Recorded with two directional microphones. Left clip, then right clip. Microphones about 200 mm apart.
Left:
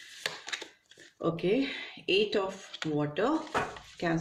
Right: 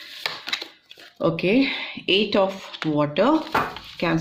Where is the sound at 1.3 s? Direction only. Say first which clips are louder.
Right 7 dB; 40° right (ahead or behind).